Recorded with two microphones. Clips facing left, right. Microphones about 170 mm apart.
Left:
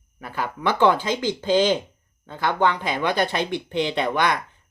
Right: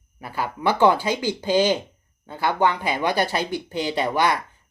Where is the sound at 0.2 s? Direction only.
10° right (ahead or behind).